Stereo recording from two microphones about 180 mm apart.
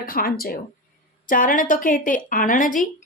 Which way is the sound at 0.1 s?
55° left (ahead or behind).